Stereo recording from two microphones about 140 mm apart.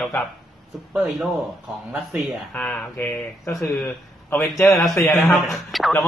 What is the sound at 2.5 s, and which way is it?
Speech, 10° left (ahead or behind).